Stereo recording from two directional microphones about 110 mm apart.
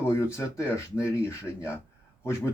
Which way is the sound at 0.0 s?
25° left (ahead or behind).